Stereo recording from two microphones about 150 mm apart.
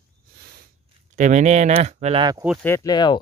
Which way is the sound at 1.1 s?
55° right (ahead or behind).